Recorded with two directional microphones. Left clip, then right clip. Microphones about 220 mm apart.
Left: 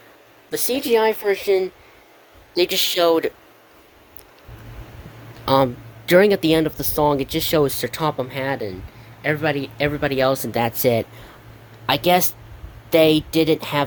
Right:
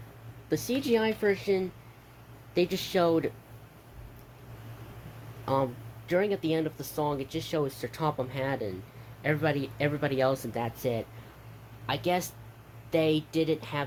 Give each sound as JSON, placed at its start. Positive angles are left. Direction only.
{"t": 0.5, "sound": "speech", "side_deg": 50}
{"t": 5.5, "sound": "speech", "side_deg": 40}